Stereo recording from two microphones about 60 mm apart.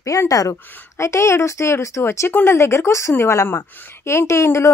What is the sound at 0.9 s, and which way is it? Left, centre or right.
Speech, left.